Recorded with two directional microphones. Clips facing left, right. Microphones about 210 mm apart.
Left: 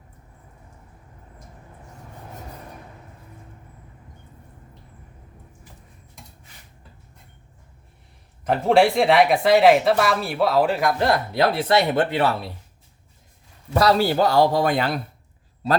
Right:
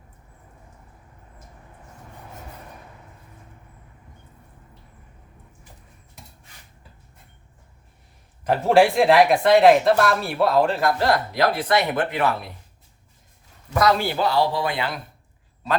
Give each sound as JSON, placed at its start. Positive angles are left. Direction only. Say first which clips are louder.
{"t": 8.4, "sound": "speech", "louder": "even", "side_deg": 0}
{"t": 10.8, "sound": "speech", "louder": "even", "side_deg": 20}
{"t": 13.7, "sound": "speech", "louder": "left 2 dB", "side_deg": 35}